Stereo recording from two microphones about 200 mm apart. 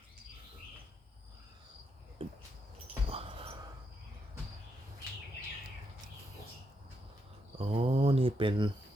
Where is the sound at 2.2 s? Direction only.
30° right (ahead or behind).